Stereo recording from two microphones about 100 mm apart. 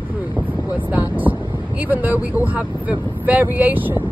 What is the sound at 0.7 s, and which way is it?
Speech, 15° right (ahead or behind).